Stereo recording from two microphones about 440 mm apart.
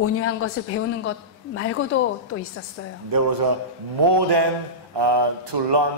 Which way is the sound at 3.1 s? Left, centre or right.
Right.